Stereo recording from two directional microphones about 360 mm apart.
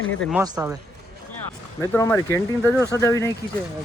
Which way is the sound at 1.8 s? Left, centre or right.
Centre.